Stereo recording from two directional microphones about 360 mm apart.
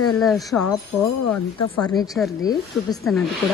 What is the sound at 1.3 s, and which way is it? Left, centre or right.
Speech, left.